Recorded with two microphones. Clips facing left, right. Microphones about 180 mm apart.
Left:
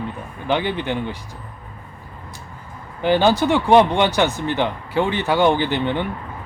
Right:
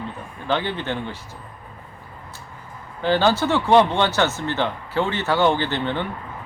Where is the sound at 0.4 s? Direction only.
15° left (ahead or behind).